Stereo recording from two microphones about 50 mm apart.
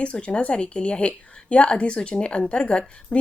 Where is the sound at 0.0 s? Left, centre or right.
Left.